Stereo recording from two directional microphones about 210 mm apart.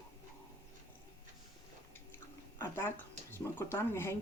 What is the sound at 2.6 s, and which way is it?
Speech, 10° left (ahead or behind).